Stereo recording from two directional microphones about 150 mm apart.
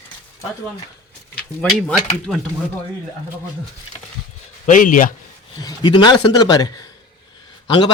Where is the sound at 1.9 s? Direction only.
5° left (ahead or behind).